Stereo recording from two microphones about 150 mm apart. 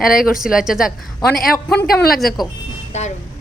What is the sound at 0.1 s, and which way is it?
Speech, 70° left (ahead or behind).